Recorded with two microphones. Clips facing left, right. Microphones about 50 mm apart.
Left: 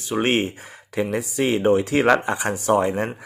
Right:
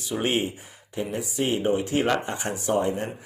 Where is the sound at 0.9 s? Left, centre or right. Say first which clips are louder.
Left 5 dB; left.